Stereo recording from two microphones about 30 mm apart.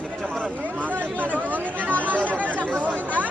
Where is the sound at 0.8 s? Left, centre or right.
Right.